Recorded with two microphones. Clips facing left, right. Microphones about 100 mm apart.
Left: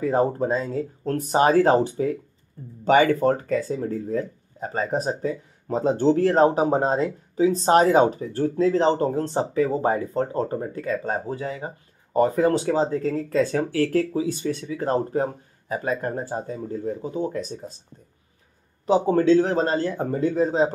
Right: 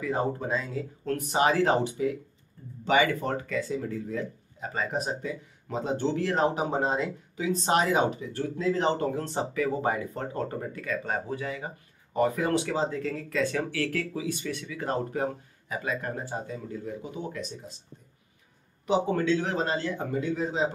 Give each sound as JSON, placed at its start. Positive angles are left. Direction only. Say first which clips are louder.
{"t": 0.0, "sound": "speech", "louder": "left 7 dB", "side_deg": 40}
{"t": 18.9, "sound": "speech", "louder": "left 7 dB", "side_deg": 35}